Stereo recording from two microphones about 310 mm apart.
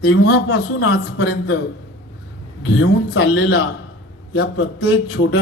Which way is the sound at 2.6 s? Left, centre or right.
Left.